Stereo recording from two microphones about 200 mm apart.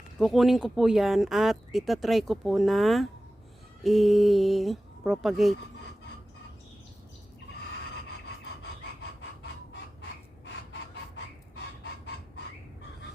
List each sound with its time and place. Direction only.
0.2 s speech: centre (ahead or behind)